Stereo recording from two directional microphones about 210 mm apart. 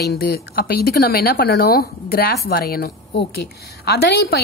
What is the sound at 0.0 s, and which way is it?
A woman's voice, 50° left (ahead or behind).